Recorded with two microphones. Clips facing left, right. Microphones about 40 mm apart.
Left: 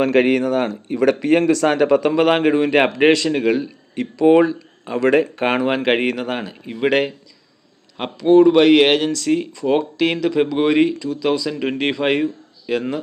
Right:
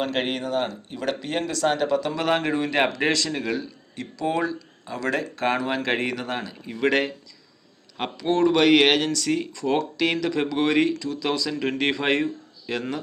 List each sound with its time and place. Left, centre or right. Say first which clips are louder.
0.0 s speech: left 10 dB; left
1.7 s speech: left 8 dB; left
2.1 s a man's voice: left 8 dB; left; by 13.0 s centre